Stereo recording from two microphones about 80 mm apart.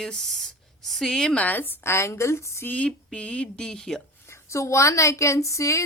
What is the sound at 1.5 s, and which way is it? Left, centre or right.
A woman's voice, left.